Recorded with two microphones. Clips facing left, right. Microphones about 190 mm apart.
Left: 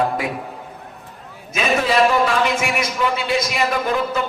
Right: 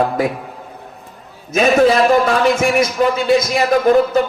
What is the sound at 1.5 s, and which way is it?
A man's voice, 45° right (ahead or behind).